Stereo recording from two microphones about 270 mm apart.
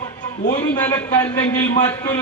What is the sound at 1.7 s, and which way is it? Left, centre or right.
Speech, centre.